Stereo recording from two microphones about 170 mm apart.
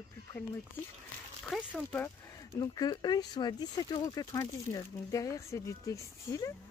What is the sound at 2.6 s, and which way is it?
Speech, 25° left (ahead or behind).